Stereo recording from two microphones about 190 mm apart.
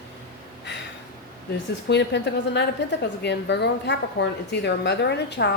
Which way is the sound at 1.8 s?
65° left (ahead or behind).